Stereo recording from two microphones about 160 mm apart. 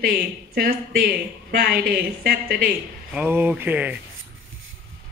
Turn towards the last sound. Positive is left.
turn(degrees=-10)  # may be behind; listen again after turning